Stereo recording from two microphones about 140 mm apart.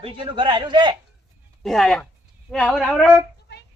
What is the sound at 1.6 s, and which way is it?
Speech, centre (ahead or behind).